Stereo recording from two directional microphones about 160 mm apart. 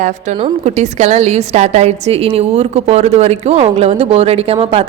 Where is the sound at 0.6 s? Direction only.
45° right (ahead or behind).